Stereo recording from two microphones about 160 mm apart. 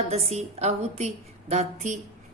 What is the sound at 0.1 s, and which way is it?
Speech, 40° right (ahead or behind).